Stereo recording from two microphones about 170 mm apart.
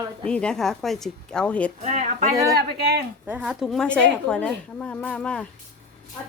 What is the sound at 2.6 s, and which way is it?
Speech, 70° right (ahead or behind).